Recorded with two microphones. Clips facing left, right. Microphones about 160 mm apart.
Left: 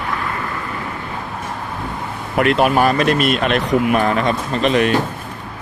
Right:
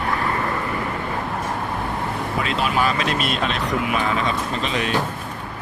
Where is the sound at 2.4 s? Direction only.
60° left (ahead or behind).